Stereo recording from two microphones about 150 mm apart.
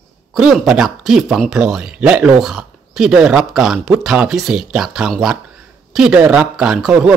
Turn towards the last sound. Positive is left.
turn(degrees=-5)  # may be behind; listen again after turning